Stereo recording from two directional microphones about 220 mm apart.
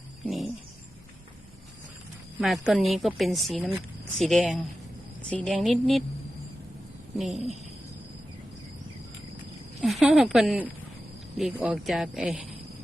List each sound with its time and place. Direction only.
0.3 s a sound: centre (ahead or behind)
2.4 s a woman's voice: centre (ahead or behind)
7.3 s a woman's voice: 30° right (ahead or behind)
9.8 s a woman's voice: centre (ahead or behind)